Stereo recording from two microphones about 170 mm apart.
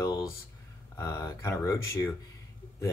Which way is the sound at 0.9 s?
15° left (ahead or behind).